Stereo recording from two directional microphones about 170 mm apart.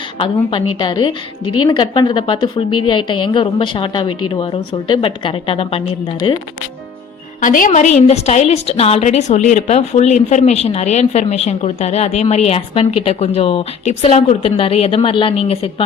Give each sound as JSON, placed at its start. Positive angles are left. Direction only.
{"t": 0.2, "sound": "a woman's voice", "side_deg": 30}
{"t": 7.4, "sound": "a woman's voice", "side_deg": 50}